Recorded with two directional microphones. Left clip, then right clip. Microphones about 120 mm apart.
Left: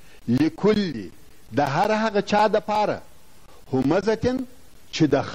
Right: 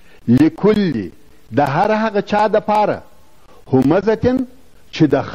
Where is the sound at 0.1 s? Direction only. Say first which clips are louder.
Right 9 dB; 35° right (ahead or behind).